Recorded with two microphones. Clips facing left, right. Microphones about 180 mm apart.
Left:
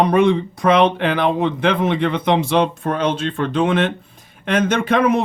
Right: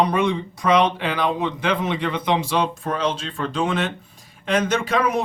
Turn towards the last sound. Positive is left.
turn(degrees=55)  # may be behind; listen again after turning